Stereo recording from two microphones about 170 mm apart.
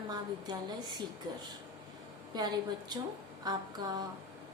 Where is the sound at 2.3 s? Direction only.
25° right (ahead or behind).